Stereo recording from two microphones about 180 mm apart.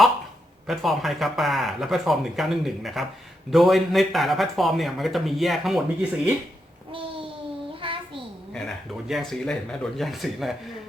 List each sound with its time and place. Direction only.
0.7 s speech: centre (ahead or behind)
7.8 s child singing: 30° right (ahead or behind)
8.5 s speech: centre (ahead or behind)